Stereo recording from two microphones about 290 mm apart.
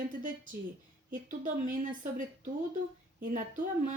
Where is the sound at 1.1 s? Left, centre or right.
Right.